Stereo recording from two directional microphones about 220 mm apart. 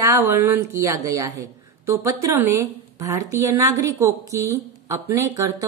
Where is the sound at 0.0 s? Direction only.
15° right (ahead or behind).